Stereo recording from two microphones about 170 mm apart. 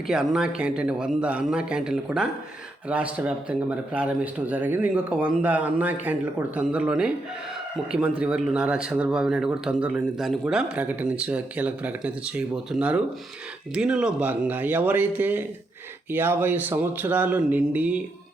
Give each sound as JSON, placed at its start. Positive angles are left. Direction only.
{"t": 0.1, "sound": "speech", "side_deg": -5}
{"t": 8.2, "sound": "speech", "side_deg": -5}